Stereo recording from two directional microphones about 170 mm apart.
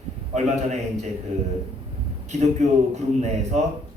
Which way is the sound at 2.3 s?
40° right (ahead or behind).